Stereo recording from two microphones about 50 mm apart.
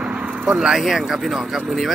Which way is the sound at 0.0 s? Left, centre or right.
Right.